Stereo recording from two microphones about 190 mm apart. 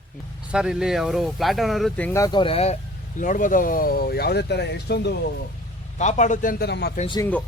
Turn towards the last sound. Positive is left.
turn(degrees=10)  # may be behind; listen again after turning